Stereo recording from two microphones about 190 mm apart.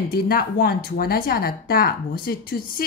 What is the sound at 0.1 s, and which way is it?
Speech, 50° left (ahead or behind).